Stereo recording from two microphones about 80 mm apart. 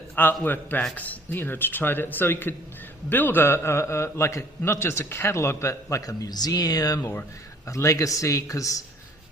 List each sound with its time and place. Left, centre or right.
0.2 s a man's voice: left